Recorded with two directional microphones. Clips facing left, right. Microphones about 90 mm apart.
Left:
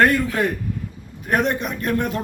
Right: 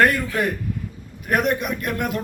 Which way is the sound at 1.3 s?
30° left (ahead or behind).